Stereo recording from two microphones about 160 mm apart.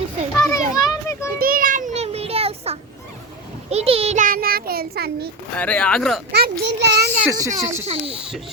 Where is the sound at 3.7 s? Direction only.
40° right (ahead or behind).